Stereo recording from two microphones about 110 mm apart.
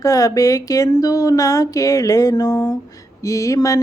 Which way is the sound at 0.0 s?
30° left (ahead or behind).